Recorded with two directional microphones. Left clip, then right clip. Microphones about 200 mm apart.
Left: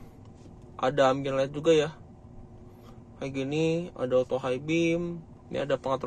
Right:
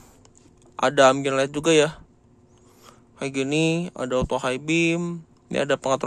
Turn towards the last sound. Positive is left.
turn(degrees=-40)  # may be behind; listen again after turning